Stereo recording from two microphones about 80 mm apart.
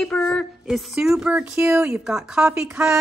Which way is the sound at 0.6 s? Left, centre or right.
Centre.